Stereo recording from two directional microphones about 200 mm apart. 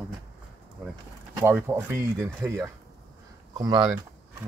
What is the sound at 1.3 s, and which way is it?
Speech, 10° right (ahead or behind).